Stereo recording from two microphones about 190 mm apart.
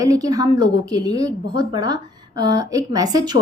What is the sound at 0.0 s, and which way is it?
A woman's voice, 20° right (ahead or behind).